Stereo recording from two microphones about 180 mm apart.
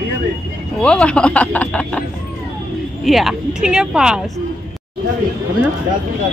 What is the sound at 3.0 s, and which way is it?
Speech, centre (ahead or behind).